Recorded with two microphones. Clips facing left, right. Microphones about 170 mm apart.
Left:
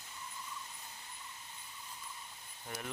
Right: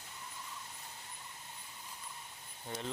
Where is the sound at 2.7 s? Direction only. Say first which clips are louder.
Right 3 dB; 25° right (ahead or behind).